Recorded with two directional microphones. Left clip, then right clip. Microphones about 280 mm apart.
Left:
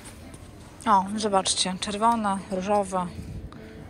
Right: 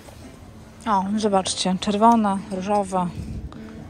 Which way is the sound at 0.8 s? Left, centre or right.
Centre.